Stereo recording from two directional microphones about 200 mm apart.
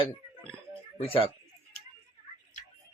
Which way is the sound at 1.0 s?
25° left (ahead or behind).